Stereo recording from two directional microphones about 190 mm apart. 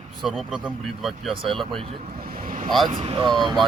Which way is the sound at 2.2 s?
50° right (ahead or behind).